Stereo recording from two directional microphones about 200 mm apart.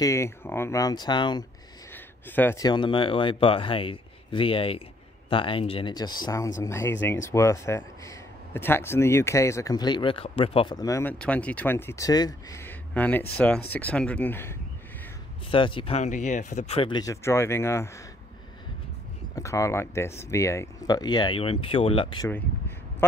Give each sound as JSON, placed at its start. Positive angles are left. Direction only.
{"t": 0.0, "sound": "speech", "side_deg": 15}
{"t": 2.2, "sound": "speech", "side_deg": 10}
{"t": 15.5, "sound": "speech", "side_deg": 25}
{"t": 19.3, "sound": "speech", "side_deg": 15}